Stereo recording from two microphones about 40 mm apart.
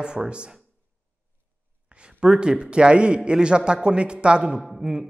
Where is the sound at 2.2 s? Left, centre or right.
Right.